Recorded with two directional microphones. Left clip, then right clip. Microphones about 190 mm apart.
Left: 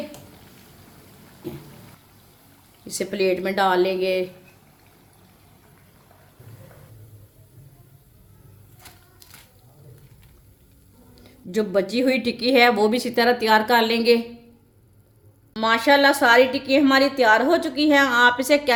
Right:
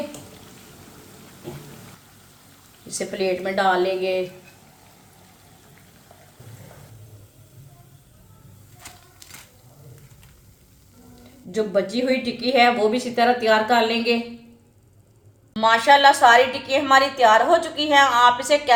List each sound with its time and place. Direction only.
2.9 s speech: 60° left (ahead or behind)
11.5 s speech: 55° left (ahead or behind)
15.5 s a woman's voice: 45° left (ahead or behind)